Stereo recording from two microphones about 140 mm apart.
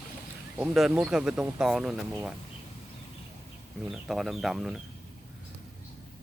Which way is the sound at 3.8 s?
Centre (ahead or behind).